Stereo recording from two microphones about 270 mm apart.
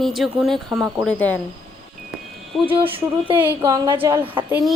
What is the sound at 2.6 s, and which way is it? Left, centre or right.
Speech, centre.